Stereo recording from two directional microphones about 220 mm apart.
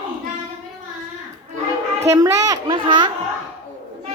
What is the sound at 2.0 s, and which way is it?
A child's voice, 15° right (ahead or behind).